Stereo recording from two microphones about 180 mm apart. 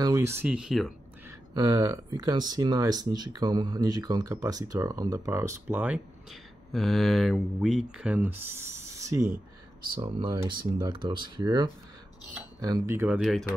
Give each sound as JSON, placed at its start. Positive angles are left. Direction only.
{"t": 0.0, "sound": "speech", "side_deg": -15}
{"t": 1.5, "sound": "speech", "side_deg": -20}
{"t": 6.7, "sound": "speech", "side_deg": 0}